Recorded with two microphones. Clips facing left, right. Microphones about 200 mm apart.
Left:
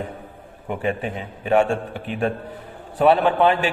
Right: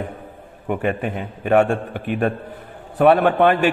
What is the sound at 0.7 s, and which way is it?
A man's voice, 55° right (ahead or behind).